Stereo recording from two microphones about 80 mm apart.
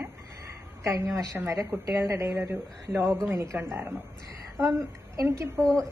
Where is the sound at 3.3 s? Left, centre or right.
Right.